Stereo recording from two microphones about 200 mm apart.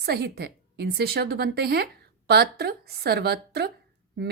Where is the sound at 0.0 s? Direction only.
50° right (ahead or behind).